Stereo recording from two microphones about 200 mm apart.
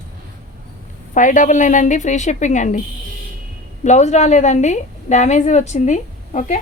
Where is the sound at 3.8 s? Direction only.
35° left (ahead or behind).